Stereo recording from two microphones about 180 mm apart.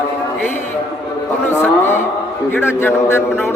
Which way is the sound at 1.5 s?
15° left (ahead or behind).